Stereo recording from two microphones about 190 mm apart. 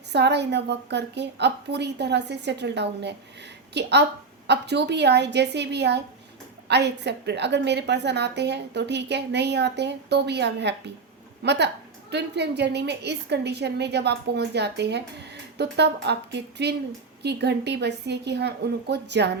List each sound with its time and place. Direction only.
0.1 s a woman's voice: 60° right (ahead or behind)